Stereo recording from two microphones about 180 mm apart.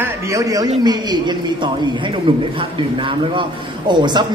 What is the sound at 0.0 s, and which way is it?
A man's voice, 20° right (ahead or behind).